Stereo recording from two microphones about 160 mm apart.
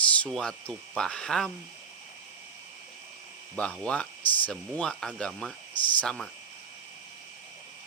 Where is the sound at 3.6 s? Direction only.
5° left (ahead or behind).